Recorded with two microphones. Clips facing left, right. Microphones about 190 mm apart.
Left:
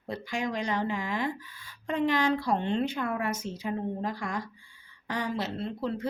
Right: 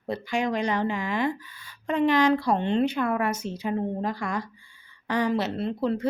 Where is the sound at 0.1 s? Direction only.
70° right (ahead or behind).